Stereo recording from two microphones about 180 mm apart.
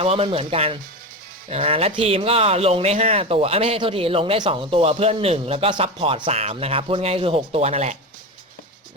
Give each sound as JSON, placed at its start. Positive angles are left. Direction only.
{"t": 0.0, "sound": "speech", "side_deg": -35}